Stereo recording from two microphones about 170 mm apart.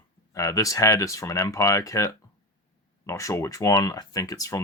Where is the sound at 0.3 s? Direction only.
20° left (ahead or behind).